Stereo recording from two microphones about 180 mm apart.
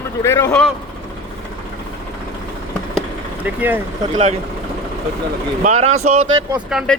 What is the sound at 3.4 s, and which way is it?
Speech, 10° right (ahead or behind).